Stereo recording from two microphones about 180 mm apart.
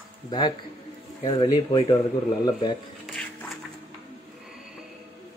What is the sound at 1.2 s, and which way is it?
Speech, 25° left (ahead or behind).